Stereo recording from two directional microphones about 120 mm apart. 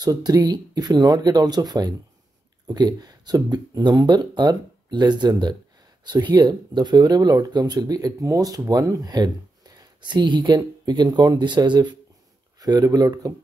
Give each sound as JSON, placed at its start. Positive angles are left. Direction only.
{"t": 0.0, "sound": "speech", "side_deg": -30}